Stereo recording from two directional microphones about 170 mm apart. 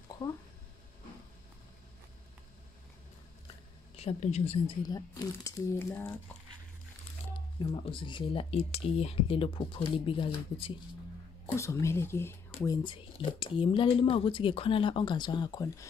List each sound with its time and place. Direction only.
3.9 s speech: 40° left (ahead or behind)
4.8 s speech: 20° left (ahead or behind)
7.7 s speech: 30° left (ahead or behind)
11.5 s speech: 15° left (ahead or behind)
12.6 s speech: 25° left (ahead or behind)